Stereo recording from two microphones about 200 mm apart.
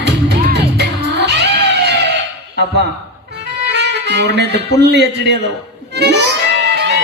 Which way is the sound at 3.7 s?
60° right (ahead or behind).